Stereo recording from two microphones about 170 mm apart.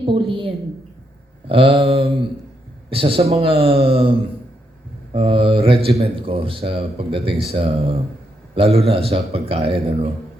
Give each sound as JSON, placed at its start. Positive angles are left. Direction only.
{"t": 0.0, "sound": "speech", "side_deg": -30}
{"t": 5.1, "sound": "speech", "side_deg": -30}